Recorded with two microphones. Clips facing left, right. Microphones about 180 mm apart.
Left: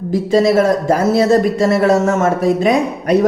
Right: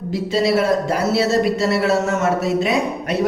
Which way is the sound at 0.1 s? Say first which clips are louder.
Left 5 dB; 50° left (ahead or behind).